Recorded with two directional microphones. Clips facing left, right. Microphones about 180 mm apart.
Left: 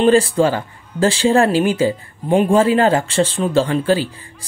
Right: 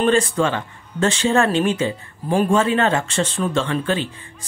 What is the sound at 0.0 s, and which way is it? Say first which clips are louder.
Speech: left 5 dB; 30° left (ahead or behind).